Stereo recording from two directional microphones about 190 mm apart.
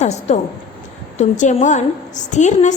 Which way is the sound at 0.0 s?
35° left (ahead or behind).